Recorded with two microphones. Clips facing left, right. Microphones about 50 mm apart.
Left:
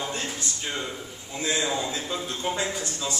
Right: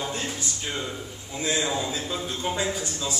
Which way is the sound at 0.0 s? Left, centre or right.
Centre.